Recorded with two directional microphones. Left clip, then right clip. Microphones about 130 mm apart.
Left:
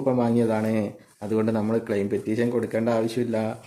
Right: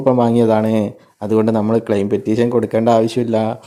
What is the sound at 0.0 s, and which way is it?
Speech, 55° right (ahead or behind).